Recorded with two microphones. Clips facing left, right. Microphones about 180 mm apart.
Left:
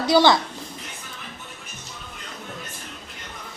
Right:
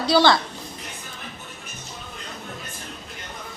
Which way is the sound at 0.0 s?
20° left (ahead or behind).